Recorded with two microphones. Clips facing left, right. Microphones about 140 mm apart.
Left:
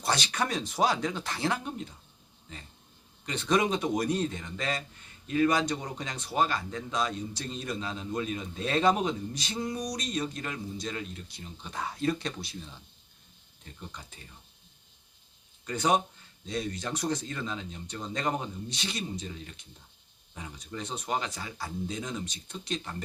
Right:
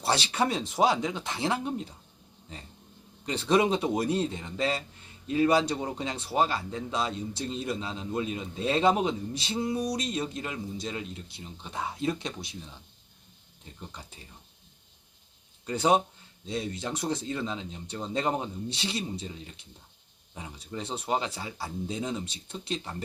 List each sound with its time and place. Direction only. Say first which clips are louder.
0.0 s speech: right 3 dB; 30° right (ahead or behind)
15.6 s speech: right 2 dB; 30° right (ahead or behind)